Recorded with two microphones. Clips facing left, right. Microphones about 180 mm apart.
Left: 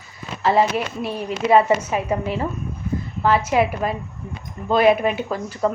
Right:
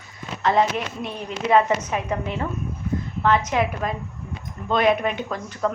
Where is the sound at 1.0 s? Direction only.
5° left (ahead or behind).